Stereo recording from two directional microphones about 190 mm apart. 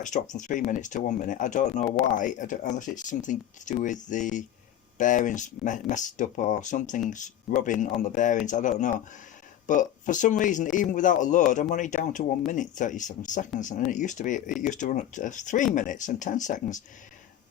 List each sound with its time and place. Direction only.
0.0 s speech: 40° left (ahead or behind)